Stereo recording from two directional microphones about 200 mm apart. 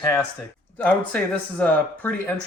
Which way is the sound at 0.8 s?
5° left (ahead or behind).